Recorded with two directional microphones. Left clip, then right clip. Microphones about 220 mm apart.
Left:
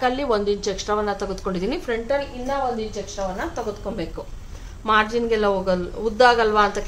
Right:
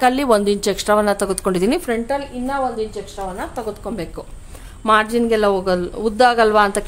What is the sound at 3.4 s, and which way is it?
Speech, 45° right (ahead or behind).